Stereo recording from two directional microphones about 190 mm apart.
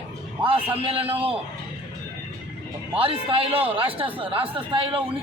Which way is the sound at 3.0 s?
30° right (ahead or behind).